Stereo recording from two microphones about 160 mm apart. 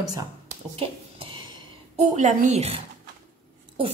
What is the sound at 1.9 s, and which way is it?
Speech, 45° right (ahead or behind).